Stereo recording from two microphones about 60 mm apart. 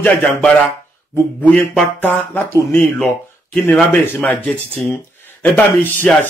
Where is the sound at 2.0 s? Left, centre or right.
Left.